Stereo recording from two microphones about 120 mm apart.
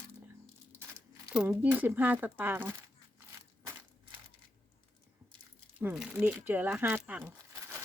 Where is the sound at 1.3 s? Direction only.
10° right (ahead or behind).